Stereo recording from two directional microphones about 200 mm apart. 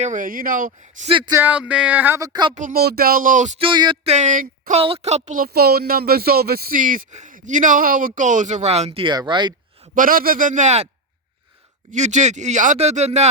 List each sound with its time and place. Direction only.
0.0 s speech: 40° right (ahead or behind); by 1.4 s 25° right (ahead or behind)
1.4 s speech: 5° right (ahead or behind)
2.6 s speech: 45° right (ahead or behind)
3.7 s speech: 25° right (ahead or behind); by 4.8 s 40° right (ahead or behind)
4.8 s speech: 30° right (ahead or behind)
9.9 s speech: 45° right (ahead or behind)
11.9 s speech: 35° right (ahead or behind)